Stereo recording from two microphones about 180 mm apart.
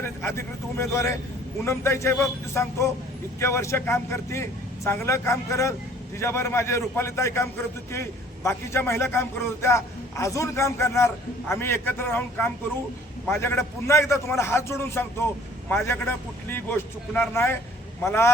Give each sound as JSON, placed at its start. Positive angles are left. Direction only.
{"t": 0.0, "sound": "a man's voice", "side_deg": 15}
{"t": 8.4, "sound": "a man's voice", "side_deg": 15}